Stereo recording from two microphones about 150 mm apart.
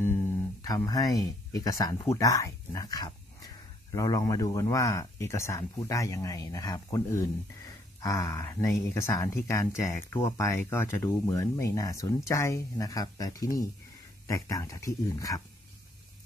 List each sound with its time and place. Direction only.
0.7 s speech: 25° left (ahead or behind)